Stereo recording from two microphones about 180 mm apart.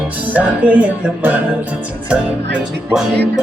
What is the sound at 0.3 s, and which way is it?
Speech, 10° right (ahead or behind).